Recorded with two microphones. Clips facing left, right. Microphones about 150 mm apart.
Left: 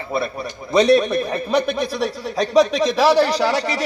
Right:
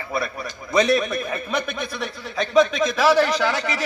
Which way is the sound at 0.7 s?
30° left (ahead or behind).